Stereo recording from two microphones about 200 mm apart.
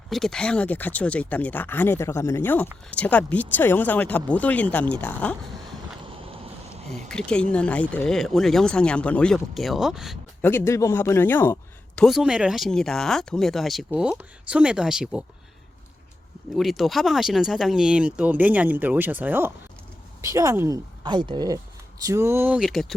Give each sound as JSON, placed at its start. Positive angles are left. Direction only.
{"t": 0.1, "sound": "speech", "side_deg": 0}
{"t": 6.9, "sound": "speech", "side_deg": 5}
{"t": 10.4, "sound": "speech", "side_deg": 10}
{"t": 11.9, "sound": "speech", "side_deg": 0}
{"t": 16.6, "sound": "speech", "side_deg": 0}